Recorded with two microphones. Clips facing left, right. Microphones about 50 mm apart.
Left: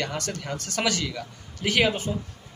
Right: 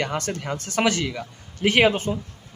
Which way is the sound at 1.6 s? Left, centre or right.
Right.